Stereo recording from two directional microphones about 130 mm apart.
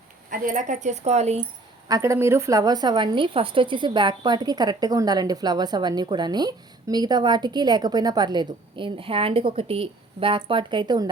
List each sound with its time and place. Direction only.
0.3 s speech: 90° right; by 1.5 s 55° right (ahead or behind)
1.9 s a woman's voice: 25° right (ahead or behind)